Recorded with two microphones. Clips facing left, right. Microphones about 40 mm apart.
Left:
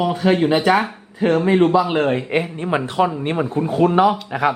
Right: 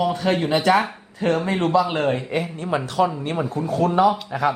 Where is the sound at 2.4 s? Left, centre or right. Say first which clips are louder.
Left 3 dB; left.